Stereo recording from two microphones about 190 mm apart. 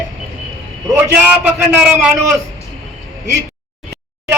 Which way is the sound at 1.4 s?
5° right (ahead or behind).